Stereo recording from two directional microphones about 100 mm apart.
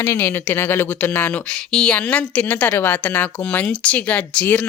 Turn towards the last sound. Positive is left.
turn(degrees=15)  # may be behind; listen again after turning